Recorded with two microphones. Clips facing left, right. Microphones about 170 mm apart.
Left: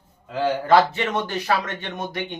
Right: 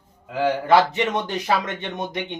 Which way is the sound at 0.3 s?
10° right (ahead or behind).